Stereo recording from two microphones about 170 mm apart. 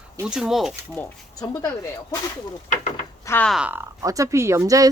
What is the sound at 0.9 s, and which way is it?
Speech, 20° left (ahead or behind).